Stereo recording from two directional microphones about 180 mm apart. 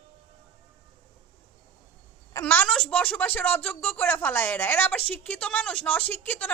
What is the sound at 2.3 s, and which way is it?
A woman's voice, 10° left (ahead or behind).